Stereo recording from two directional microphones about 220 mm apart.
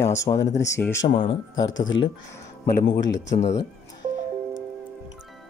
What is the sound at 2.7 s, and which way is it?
Speech, 55° left (ahead or behind).